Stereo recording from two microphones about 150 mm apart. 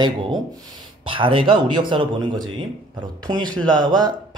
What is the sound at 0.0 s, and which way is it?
Speech, 30° right (ahead or behind).